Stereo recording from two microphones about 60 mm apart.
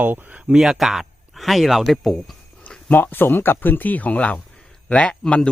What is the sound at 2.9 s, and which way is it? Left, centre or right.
A man's voice, left.